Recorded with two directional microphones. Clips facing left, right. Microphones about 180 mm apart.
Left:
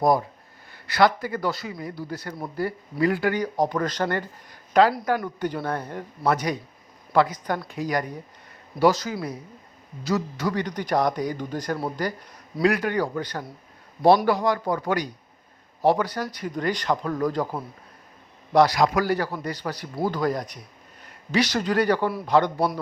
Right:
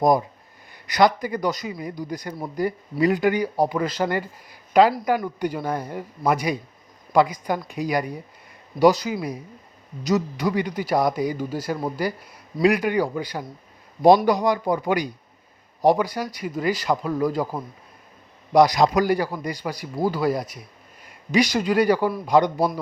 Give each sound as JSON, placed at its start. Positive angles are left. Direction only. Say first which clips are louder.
{"t": 0.0, "sound": "speech", "louder": "right 2 dB", "side_deg": -15}
{"t": 22.5, "sound": "a man's voice", "louder": "right 2 dB", "side_deg": 0}